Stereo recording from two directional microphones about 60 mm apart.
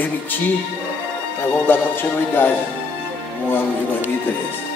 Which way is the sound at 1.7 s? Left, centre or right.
Left.